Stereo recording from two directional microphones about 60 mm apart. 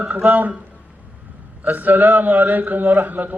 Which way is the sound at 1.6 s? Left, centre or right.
Right.